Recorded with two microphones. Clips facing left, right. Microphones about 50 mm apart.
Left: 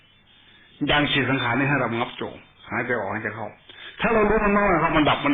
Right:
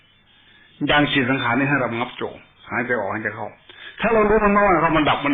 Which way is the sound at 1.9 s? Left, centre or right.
Centre.